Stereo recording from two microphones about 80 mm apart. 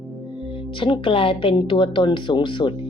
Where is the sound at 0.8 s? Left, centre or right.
Left.